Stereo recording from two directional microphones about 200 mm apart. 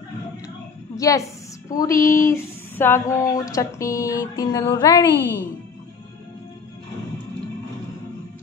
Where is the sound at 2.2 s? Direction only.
10° left (ahead or behind).